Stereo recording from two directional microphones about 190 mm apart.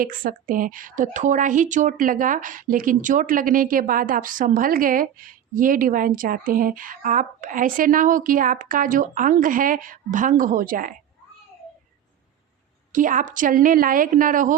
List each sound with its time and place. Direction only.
0.0 s speech: 45° right (ahead or behind)
12.9 s speech: 45° right (ahead or behind)